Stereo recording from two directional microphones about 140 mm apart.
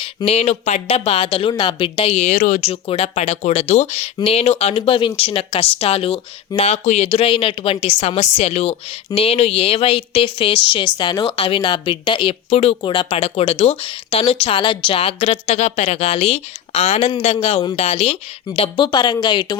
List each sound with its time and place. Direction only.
0.3 s speech: 50° left (ahead or behind)
2.0 s speech: 55° left (ahead or behind)
2.6 s speech: 50° left (ahead or behind)
17.1 s speech: 35° left (ahead or behind)